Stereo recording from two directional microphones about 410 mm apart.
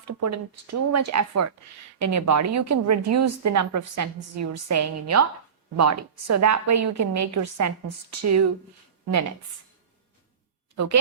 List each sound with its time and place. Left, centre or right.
0.0 s a woman's voice: right